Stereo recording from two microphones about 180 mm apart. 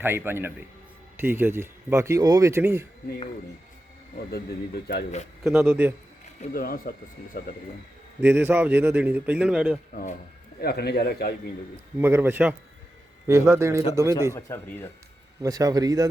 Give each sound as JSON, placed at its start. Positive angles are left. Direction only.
{"t": 0.0, "sound": "speech", "side_deg": -10}
{"t": 4.3, "sound": "a man's voice", "side_deg": 60}
{"t": 5.5, "sound": "speech", "side_deg": -10}
{"t": 6.5, "sound": "speech", "side_deg": 55}
{"t": 8.2, "sound": "speech", "side_deg": -10}
{"t": 9.9, "sound": "speech", "side_deg": 50}
{"t": 10.6, "sound": "a man's voice", "side_deg": 60}
{"t": 11.9, "sound": "speech", "side_deg": -10}
{"t": 14.3, "sound": "speech", "side_deg": 15}
{"t": 15.4, "sound": "speech", "side_deg": -20}